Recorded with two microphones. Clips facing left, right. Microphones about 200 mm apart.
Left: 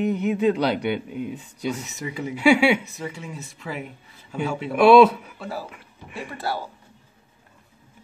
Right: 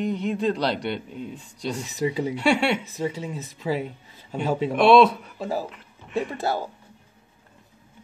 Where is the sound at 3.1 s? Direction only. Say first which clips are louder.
Right 4 dB; 40° right (ahead or behind).